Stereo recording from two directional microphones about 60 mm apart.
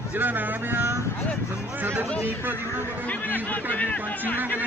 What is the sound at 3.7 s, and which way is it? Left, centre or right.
Speech, left.